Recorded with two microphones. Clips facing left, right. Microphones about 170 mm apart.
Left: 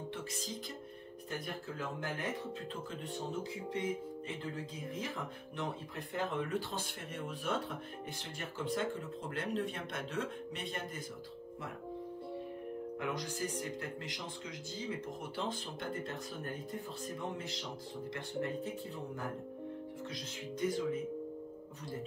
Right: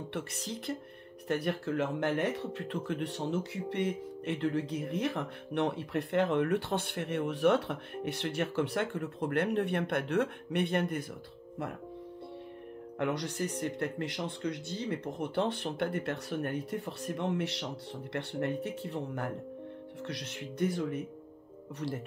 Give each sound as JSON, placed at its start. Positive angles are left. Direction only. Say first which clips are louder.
{"t": 0.1, "sound": "speech", "louder": "right 4 dB", "side_deg": -70}
{"t": 13.0, "sound": "speech", "louder": "right 8 dB", "side_deg": -65}